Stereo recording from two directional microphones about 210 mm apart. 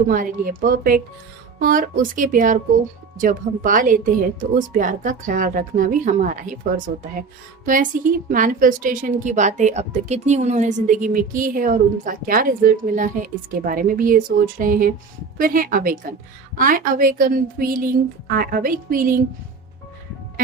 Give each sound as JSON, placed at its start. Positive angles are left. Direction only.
{"t": 0.1, "sound": "speech", "side_deg": -40}